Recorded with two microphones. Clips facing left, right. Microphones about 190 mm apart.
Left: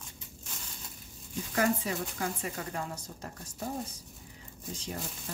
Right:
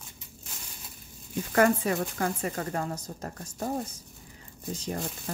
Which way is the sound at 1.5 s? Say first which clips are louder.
Right 6 dB; 60° right (ahead or behind).